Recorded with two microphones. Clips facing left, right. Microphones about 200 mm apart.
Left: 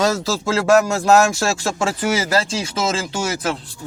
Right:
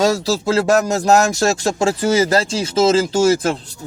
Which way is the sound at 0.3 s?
35° right (ahead or behind).